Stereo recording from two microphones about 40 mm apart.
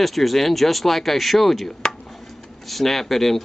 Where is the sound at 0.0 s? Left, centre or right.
Centre.